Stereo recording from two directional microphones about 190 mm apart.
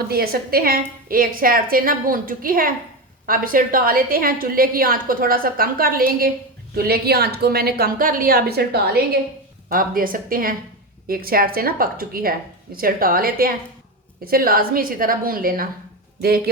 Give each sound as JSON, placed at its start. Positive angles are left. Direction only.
{"t": 0.1, "sound": "a woman's voice", "side_deg": -55}